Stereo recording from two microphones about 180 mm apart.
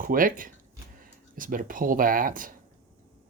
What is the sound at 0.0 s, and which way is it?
Speech, 50° right (ahead or behind).